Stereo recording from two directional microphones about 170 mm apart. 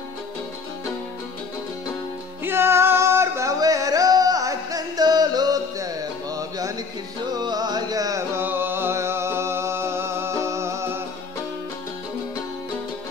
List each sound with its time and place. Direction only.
2.4 s music: 15° right (ahead or behind)
7.3 s carnatic music: 25° right (ahead or behind)